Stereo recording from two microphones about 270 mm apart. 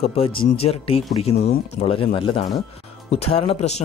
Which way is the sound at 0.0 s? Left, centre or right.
Left.